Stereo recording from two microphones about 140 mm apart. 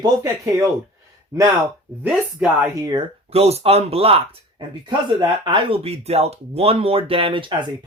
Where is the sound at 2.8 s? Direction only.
30° right (ahead or behind).